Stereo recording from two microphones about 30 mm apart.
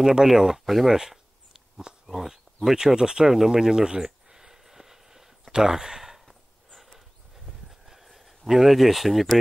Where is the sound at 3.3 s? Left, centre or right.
Centre.